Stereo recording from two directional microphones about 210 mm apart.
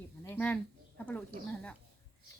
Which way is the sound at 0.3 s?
10° left (ahead or behind).